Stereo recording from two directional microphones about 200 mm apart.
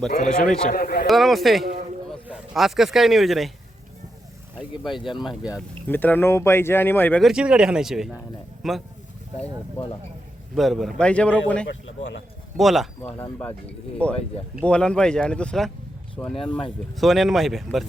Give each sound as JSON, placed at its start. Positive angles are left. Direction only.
{"t": 0.3, "sound": "speech", "side_deg": 5}
{"t": 0.7, "sound": "speech", "side_deg": 45}
{"t": 1.0, "sound": "speech", "side_deg": 0}
{"t": 4.9, "sound": "speech", "side_deg": 25}
{"t": 5.3, "sound": "speech", "side_deg": -5}
{"t": 5.9, "sound": "speech", "side_deg": 10}
{"t": 10.5, "sound": "speech", "side_deg": 0}
{"t": 16.4, "sound": "speech", "side_deg": 25}
{"t": 16.9, "sound": "speech", "side_deg": 0}